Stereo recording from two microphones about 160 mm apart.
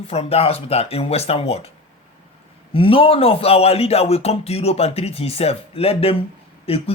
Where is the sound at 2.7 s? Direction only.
35° left (ahead or behind).